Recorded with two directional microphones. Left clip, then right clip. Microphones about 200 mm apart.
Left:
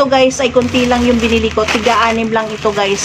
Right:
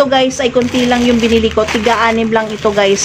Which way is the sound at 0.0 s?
30° right (ahead or behind).